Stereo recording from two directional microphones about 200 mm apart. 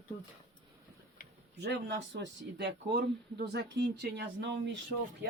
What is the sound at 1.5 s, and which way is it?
Speech, 60° right (ahead or behind).